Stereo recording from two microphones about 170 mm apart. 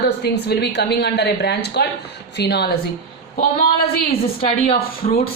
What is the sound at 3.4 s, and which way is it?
Speech, 60° left (ahead or behind).